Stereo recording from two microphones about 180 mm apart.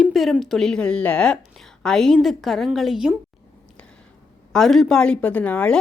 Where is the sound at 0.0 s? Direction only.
Centre (ahead or behind).